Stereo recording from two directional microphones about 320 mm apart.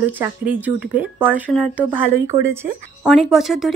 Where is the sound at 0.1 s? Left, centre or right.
Centre.